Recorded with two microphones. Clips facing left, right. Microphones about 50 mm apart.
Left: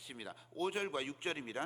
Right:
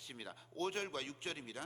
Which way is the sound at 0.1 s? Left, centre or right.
Centre.